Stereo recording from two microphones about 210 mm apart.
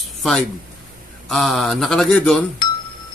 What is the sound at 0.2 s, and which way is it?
A man's voice, 5° left (ahead or behind).